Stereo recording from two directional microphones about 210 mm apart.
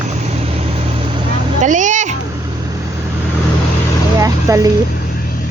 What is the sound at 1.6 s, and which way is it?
Music, 35° right (ahead or behind).